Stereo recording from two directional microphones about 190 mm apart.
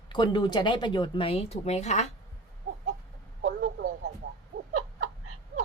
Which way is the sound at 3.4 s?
70° right (ahead or behind).